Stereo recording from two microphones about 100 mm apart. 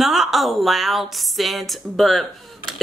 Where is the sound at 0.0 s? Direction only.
5° right (ahead or behind).